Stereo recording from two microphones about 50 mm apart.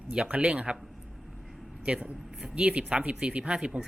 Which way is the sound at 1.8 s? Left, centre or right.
Right.